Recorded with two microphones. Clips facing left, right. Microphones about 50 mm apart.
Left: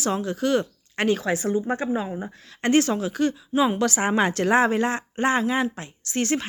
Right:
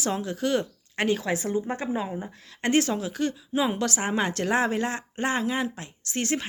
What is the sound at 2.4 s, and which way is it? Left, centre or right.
A woman's voice, centre.